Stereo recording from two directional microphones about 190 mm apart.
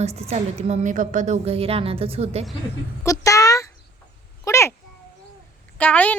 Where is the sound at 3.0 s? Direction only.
15° left (ahead or behind).